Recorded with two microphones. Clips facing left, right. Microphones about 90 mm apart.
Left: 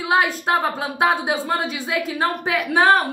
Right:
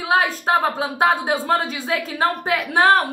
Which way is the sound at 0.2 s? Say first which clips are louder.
Right 1 dB; 35° right (ahead or behind).